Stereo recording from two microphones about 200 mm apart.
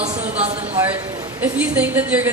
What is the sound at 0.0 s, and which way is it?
Speech, 35° right (ahead or behind).